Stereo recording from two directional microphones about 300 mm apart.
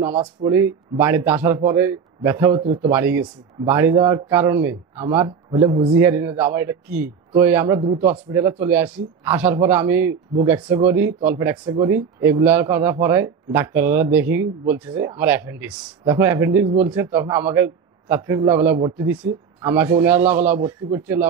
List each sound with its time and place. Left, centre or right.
0.1 s a man's voice: centre
2.9 s speech: centre